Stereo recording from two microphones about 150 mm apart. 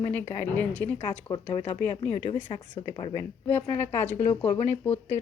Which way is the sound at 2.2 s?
35° left (ahead or behind).